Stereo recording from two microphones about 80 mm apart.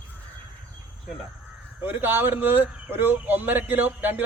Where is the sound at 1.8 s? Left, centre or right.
Right.